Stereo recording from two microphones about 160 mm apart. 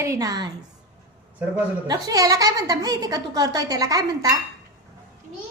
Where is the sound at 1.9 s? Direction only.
25° right (ahead or behind).